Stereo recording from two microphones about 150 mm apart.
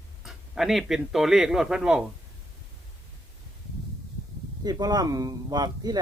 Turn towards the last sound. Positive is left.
turn(degrees=-25)  # may be behind; listen again after turning